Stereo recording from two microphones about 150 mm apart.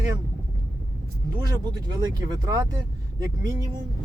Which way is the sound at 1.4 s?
20° right (ahead or behind).